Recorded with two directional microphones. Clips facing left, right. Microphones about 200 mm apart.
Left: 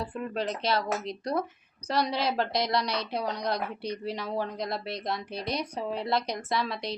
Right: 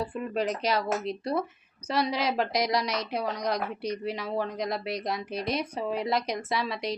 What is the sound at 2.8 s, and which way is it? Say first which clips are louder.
Speech: right 1 dB; 30° left (ahead or behind).